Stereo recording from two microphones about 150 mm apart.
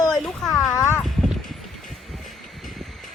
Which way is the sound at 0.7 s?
20° left (ahead or behind).